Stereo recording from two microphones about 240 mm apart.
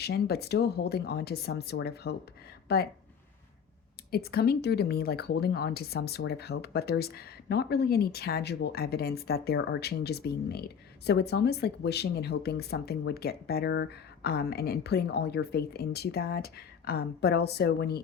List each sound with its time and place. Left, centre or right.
0.0 s speech: left
4.1 s speech: left